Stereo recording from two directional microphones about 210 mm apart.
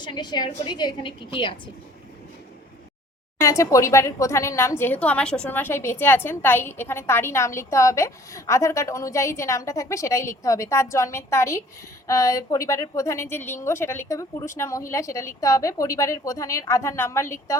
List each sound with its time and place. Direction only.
0.0 s a woman's voice: 20° left (ahead or behind)
3.4 s a woman's voice: 15° left (ahead or behind)